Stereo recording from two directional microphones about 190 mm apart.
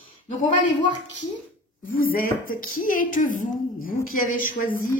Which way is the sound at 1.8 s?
50° left (ahead or behind).